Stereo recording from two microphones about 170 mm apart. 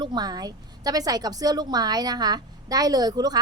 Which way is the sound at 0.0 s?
25° right (ahead or behind).